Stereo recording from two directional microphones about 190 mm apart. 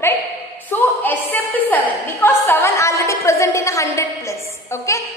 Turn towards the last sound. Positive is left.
turn(degrees=15)  # may be behind; listen again after turning